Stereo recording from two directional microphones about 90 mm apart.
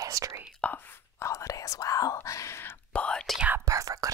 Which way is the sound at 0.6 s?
15° left (ahead or behind).